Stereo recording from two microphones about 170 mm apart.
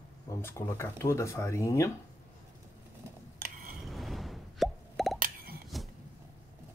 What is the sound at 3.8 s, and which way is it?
Plop, centre (ahead or behind).